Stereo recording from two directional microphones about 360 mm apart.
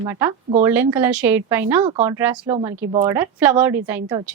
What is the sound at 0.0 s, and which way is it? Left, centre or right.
Speech, centre.